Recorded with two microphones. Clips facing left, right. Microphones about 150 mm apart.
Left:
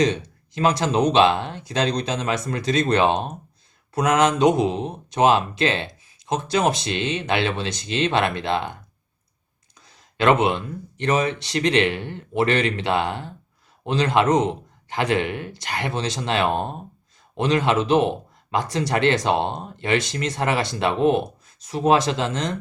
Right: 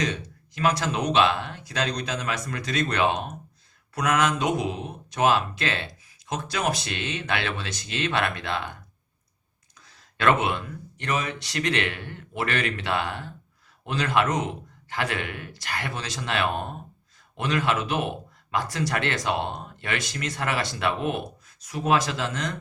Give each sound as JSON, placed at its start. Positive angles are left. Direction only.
{"t": 0.0, "sound": "speech", "side_deg": 25}
{"t": 10.2, "sound": "speech", "side_deg": 20}